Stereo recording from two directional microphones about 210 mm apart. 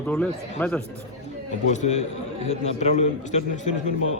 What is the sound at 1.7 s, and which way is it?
A man's voice, 35° left (ahead or behind).